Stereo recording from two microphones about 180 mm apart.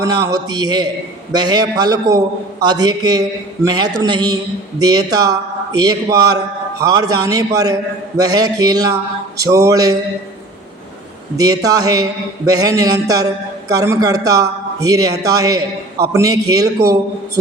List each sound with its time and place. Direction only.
0.0 s a man's voice: 20° right (ahead or behind)
9.4 s a sound: 15° right (ahead or behind)
11.3 s a man's voice: 20° right (ahead or behind)